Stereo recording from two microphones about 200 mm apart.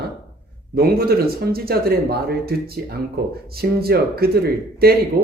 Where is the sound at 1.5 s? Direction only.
50° right (ahead or behind).